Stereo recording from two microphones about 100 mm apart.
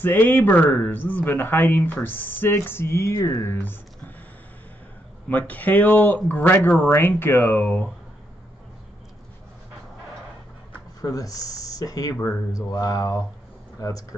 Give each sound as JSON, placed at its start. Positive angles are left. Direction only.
{"t": 0.0, "sound": "speech", "side_deg": 20}
{"t": 5.3, "sound": "speech", "side_deg": 15}
{"t": 11.0, "sound": "speech", "side_deg": 35}
{"t": 12.5, "sound": "a sound", "side_deg": 35}
{"t": 13.7, "sound": "speech", "side_deg": 35}